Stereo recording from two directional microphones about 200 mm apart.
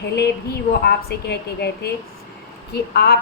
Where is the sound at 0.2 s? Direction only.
55° left (ahead or behind).